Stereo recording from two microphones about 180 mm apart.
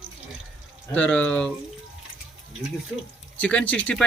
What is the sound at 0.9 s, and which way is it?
Speech, 5° left (ahead or behind).